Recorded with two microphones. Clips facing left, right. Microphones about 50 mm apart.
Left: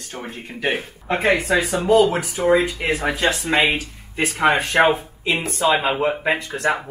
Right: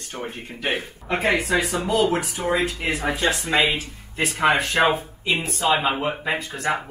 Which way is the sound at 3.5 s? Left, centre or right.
Left.